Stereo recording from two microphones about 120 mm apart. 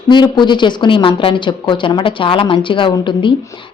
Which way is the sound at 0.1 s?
40° left (ahead or behind).